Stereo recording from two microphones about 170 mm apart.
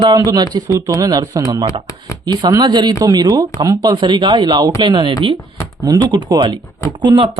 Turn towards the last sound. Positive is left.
turn(degrees=-30)  # may be behind; listen again after turning